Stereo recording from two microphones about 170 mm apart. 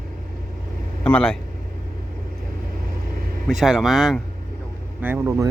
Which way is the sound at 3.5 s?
Centre (ahead or behind).